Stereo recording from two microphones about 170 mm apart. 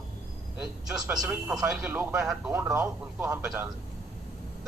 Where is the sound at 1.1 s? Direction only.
10° right (ahead or behind).